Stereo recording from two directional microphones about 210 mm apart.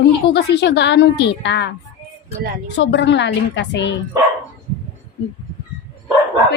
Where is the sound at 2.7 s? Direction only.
60° left (ahead or behind).